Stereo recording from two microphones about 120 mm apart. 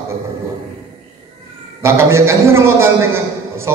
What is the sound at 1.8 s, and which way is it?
A man's voice, 25° right (ahead or behind).